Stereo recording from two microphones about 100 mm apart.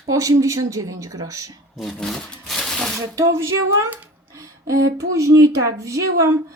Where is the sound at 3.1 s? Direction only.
30° right (ahead or behind).